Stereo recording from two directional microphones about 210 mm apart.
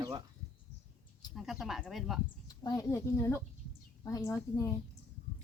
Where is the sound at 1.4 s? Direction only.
Centre (ahead or behind).